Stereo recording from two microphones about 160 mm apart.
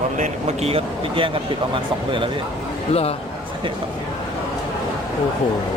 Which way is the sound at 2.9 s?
40° left (ahead or behind).